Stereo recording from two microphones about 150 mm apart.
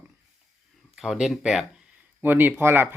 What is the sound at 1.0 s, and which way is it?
Speech, 5° right (ahead or behind).